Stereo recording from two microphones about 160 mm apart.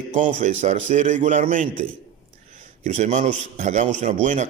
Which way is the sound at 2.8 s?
50° right (ahead or behind).